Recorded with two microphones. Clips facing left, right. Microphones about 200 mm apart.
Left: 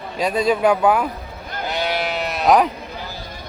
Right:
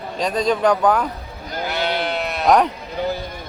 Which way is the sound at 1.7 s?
10° left (ahead or behind).